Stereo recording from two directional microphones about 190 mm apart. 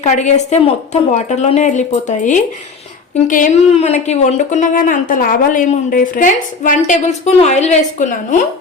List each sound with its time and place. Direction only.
0.0 s a woman's voice: 40° left (ahead or behind)